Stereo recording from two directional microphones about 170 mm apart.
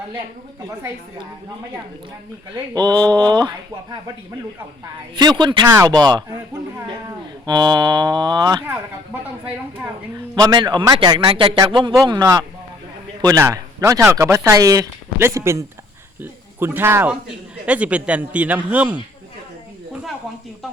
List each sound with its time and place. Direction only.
2.7 s a man's voice: 25° right (ahead or behind)
5.1 s a man's voice: 25° right (ahead or behind)
7.4 s a man's voice: 25° right (ahead or behind)
10.3 s a man's voice: 25° right (ahead or behind)